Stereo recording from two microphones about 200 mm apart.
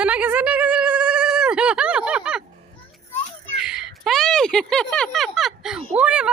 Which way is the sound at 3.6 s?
5° right (ahead or behind).